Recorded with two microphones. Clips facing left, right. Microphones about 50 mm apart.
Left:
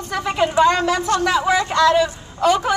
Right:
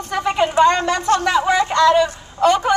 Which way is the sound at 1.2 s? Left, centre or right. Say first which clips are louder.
Right 1 dB; centre.